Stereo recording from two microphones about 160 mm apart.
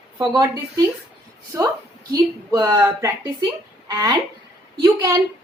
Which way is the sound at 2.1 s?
20° right (ahead or behind).